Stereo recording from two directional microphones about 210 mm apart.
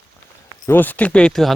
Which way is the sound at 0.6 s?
10° left (ahead or behind).